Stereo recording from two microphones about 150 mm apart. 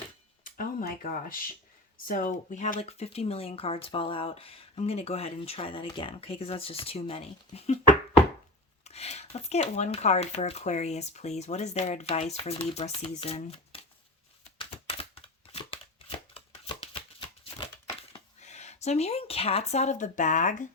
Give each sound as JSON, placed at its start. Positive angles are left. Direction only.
{"t": 0.4, "sound": "a sound", "side_deg": 65}
{"t": 2.0, "sound": "speech", "side_deg": 70}
{"t": 2.8, "sound": "speech", "side_deg": 45}
{"t": 8.8, "sound": "speech", "side_deg": 45}
{"t": 14.6, "sound": "a sound", "side_deg": 40}
{"t": 18.1, "sound": "speech", "side_deg": 50}